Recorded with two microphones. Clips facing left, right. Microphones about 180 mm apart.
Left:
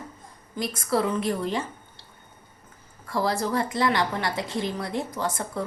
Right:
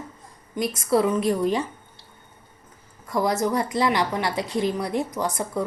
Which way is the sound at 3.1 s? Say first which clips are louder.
Right 3 dB; 20° right (ahead or behind).